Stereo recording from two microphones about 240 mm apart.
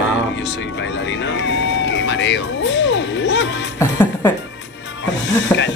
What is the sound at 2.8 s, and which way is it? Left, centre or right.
Music, left.